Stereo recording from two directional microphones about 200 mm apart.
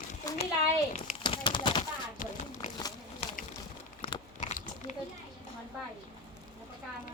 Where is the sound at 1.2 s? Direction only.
25° left (ahead or behind).